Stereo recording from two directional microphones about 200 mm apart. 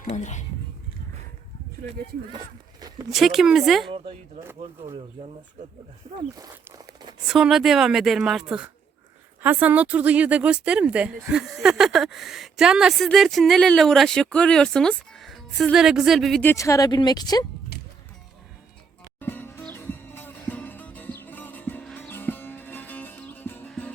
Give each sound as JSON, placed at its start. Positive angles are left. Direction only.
{"t": 0.1, "sound": "speech", "side_deg": 35}
{"t": 3.1, "sound": "speech", "side_deg": 0}
{"t": 6.3, "sound": "a sound", "side_deg": -20}
{"t": 7.3, "sound": "speech", "side_deg": 0}
{"t": 17.7, "sound": "a sound", "side_deg": 50}
{"t": 19.2, "sound": "music", "side_deg": 10}